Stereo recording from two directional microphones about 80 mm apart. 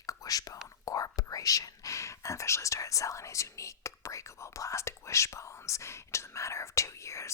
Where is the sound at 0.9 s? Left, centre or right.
Left.